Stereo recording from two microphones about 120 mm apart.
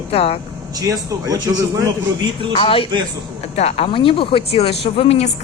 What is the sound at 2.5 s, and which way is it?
Speech, 50° left (ahead or behind).